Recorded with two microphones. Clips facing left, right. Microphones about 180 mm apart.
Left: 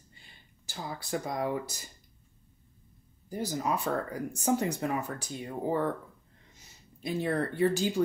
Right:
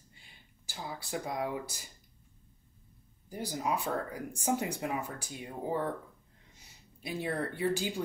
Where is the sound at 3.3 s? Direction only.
10° right (ahead or behind).